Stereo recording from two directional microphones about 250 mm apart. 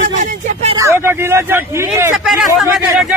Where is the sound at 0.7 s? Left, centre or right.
Centre.